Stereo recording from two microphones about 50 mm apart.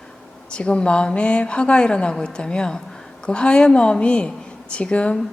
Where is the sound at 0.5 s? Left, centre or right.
Centre.